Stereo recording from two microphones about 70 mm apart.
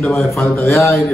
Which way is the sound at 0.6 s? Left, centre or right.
Left.